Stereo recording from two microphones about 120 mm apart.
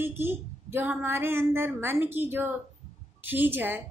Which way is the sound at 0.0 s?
20° right (ahead or behind).